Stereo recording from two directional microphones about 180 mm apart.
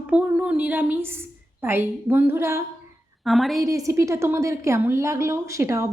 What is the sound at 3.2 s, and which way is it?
Speech, centre (ahead or behind).